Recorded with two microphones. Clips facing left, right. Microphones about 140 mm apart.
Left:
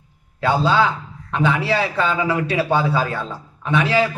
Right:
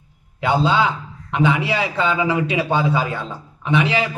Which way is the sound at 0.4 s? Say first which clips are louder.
Even; 15° right (ahead or behind).